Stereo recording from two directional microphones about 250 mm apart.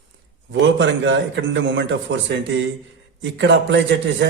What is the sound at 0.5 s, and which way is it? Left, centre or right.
Speech, right.